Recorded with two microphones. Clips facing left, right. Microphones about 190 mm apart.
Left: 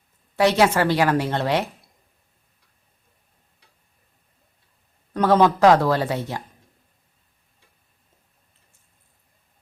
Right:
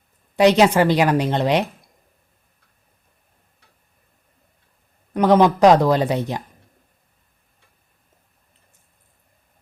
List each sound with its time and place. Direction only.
0.3 s a woman's voice: 15° right (ahead or behind)
5.1 s a woman's voice: 15° right (ahead or behind)